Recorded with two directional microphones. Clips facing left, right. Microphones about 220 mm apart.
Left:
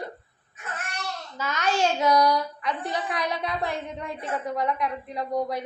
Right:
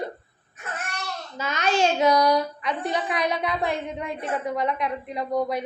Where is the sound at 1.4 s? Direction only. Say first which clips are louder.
Right 2 dB; 25° right (ahead or behind).